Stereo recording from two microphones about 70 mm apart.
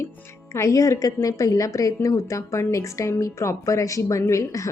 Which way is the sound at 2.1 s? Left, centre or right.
Left.